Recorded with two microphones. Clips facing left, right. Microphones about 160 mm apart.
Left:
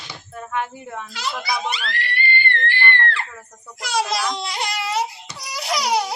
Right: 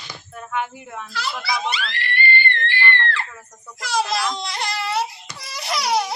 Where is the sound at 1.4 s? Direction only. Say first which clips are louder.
Even; 45° left (ahead or behind).